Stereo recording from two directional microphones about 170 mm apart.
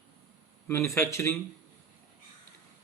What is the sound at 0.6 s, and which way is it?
Speech, 15° left (ahead or behind).